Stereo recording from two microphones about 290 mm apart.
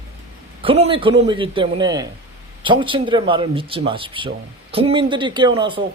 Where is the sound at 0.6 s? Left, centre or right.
Centre.